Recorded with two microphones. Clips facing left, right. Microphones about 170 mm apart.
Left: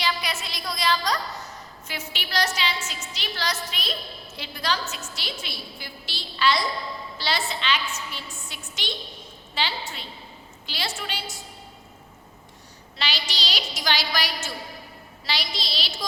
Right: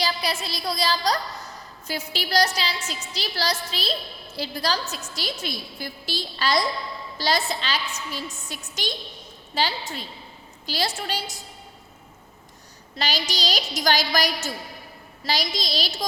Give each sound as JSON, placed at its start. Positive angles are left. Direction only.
{"t": 0.0, "sound": "a woman's voice", "side_deg": -35}
{"t": 13.0, "sound": "a woman's voice", "side_deg": -40}